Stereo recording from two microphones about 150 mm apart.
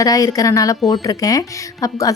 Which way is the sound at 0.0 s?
25° left (ahead or behind).